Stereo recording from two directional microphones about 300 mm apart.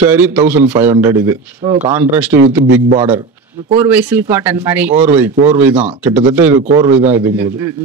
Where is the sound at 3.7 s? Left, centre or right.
Centre.